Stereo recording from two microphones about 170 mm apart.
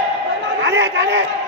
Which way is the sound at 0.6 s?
90° right.